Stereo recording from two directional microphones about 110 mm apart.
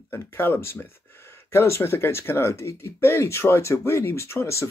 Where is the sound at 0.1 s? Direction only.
20° left (ahead or behind).